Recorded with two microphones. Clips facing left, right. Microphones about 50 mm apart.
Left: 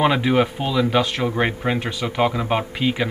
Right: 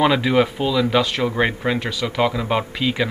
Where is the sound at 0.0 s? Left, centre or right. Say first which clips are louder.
Right 1 dB; left.